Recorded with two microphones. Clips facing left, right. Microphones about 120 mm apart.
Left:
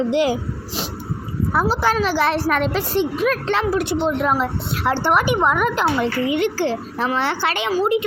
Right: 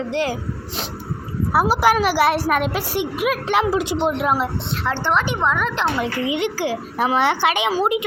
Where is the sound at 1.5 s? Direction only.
10° right (ahead or behind).